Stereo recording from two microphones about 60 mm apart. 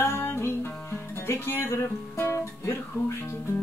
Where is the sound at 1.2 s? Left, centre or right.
Left.